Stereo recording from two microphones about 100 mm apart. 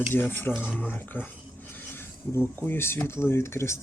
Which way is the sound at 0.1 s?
20° left (ahead or behind).